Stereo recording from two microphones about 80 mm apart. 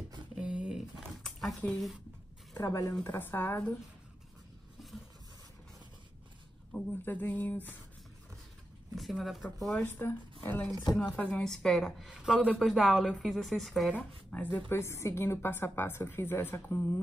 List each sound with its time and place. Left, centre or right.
0.4 s a sound: centre
2.5 s speech: left
3.0 s a woman's voice: left
6.7 s a woman's voice: left
8.9 s speech: centre
10.0 s a woman's voice: left
10.7 s speech: left
11.1 s speech: centre
12.2 s a man's voice: centre
12.6 s speech: centre
13.9 s a woman's voice: left
14.7 s a woman's voice: left